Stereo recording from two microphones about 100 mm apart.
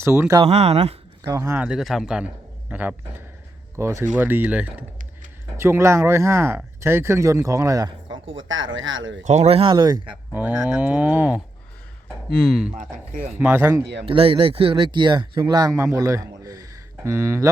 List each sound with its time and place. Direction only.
0.0 s speech: 25° right (ahead or behind)
0.4 s speech: 90° right
1.2 s speech: 30° right (ahead or behind)
1.5 s speech: 10° right (ahead or behind)
3.8 s speech: 25° right (ahead or behind)
5.5 s speech: 25° right (ahead or behind); by 8.4 s 50° right (ahead or behind)
9.4 s speech: 75° right (ahead or behind)
9.7 s speech: 45° right (ahead or behind)
10.3 s speech: 20° right (ahead or behind)
12.0 s a sound: 5° left (ahead or behind)
13.2 s speech: 20° right (ahead or behind)
14.0 s speech: 65° right (ahead or behind); by 17.5 s 25° right (ahead or behind)